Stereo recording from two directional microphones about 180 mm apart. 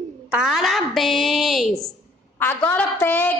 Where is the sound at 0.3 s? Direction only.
5° right (ahead or behind).